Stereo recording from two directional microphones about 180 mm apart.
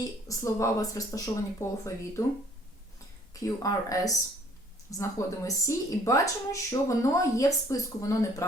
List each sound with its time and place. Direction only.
0.0 s speech: 15° left (ahead or behind)
3.4 s speech: 20° left (ahead or behind)